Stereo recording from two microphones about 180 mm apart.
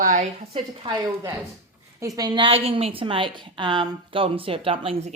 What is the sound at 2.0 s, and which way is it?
A woman's voice, 20° right (ahead or behind).